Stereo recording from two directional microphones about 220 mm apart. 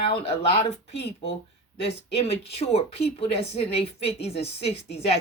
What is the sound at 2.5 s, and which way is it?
A woman's voice, 25° left (ahead or behind).